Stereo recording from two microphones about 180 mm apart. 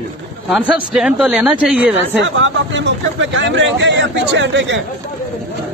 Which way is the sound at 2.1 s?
90° right.